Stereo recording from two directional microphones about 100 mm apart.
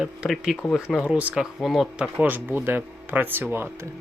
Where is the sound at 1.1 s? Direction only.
10° right (ahead or behind).